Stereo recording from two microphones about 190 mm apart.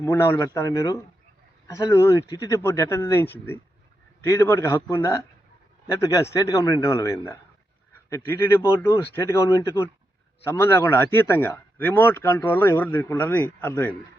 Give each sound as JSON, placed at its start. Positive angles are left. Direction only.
{"t": 0.0, "sound": "speech", "side_deg": 15}